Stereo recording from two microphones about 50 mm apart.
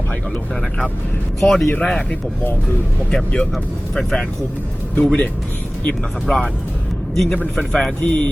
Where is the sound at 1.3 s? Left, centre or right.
Centre.